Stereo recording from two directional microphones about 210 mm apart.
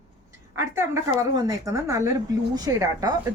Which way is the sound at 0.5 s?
10° right (ahead or behind).